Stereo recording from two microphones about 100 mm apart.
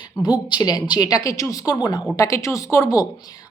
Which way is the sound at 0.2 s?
40° left (ahead or behind).